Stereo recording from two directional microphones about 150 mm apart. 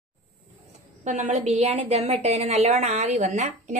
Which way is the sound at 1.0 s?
50° right (ahead or behind).